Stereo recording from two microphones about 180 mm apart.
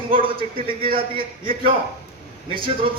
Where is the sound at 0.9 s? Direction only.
50° right (ahead or behind).